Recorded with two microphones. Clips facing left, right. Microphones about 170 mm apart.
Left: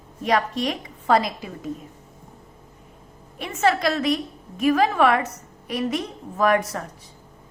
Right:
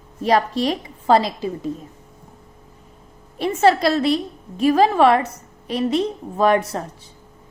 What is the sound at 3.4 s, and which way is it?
A woman's voice, 35° right (ahead or behind).